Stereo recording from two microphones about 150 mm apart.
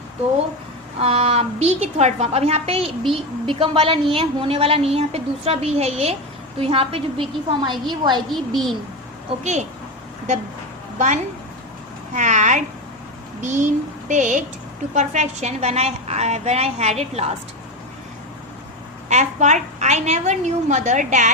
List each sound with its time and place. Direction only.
0.9 s a woman's voice: 45° right (ahead or behind)
8.3 s a woman's voice: centre (ahead or behind)
9.4 s a woman's voice: 50° right (ahead or behind)
10.9 s a woman's voice: 55° right (ahead or behind)
19.0 s a woman's voice: 50° right (ahead or behind)